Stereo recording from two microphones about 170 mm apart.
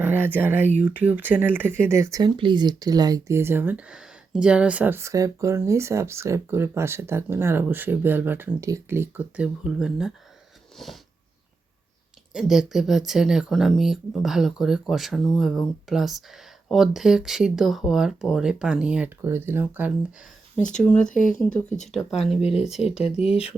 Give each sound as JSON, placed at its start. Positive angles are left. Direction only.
{"t": 0.0, "sound": "speech", "side_deg": -10}
{"t": 12.3, "sound": "speech", "side_deg": -5}
{"t": 20.7, "sound": "speech", "side_deg": 5}